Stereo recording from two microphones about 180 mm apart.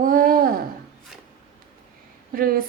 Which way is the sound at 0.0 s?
50° right (ahead or behind).